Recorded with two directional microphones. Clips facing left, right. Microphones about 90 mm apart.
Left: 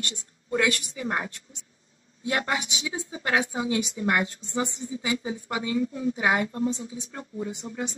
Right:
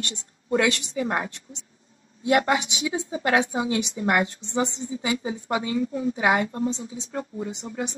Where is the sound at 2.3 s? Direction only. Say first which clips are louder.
Right 7 dB; 25° right (ahead or behind).